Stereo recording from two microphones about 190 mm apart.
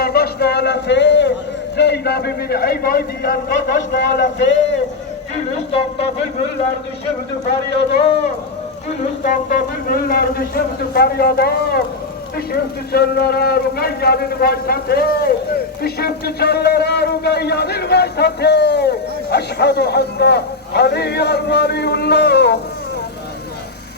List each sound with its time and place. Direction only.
0.0 s a sound: 55° left (ahead or behind)
1.7 s a man's voice: 60° left (ahead or behind)
4.2 s a man's voice: 70° left (ahead or behind)
9.2 s a man's voice: 45° left (ahead or behind)
12.9 s a man's voice: 55° left (ahead or behind)